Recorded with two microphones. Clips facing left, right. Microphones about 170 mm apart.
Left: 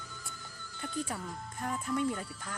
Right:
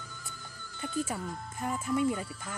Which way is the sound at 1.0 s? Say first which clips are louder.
Right 3 dB; 5° right (ahead or behind).